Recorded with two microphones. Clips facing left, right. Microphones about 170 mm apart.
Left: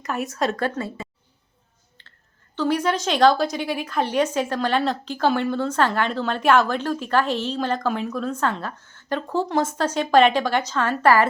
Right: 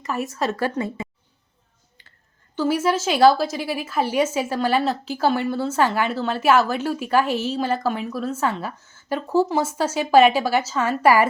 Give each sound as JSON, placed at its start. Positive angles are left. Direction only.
{"t": 0.0, "sound": "a woman's voice", "side_deg": 0}
{"t": 0.8, "sound": "a woman's voice", "side_deg": -20}
{"t": 2.0, "sound": "a sound", "side_deg": -10}
{"t": 2.6, "sound": "a woman's voice", "side_deg": -5}